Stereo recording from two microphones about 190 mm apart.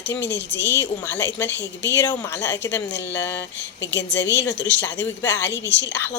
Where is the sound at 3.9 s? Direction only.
65° left (ahead or behind).